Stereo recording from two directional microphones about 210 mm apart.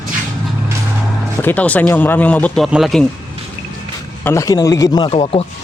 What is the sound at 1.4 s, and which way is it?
Speech, 5° left (ahead or behind).